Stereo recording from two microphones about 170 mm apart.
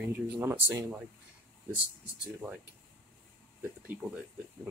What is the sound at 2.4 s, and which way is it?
Speech, centre (ahead or behind).